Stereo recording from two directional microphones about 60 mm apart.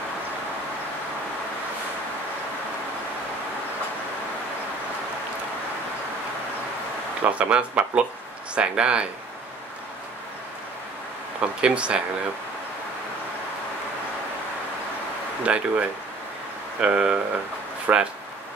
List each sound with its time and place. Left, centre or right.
7.2 s speech: right
11.6 s speech: centre
15.4 s speech: centre
16.8 s speech: centre
17.9 s speech: right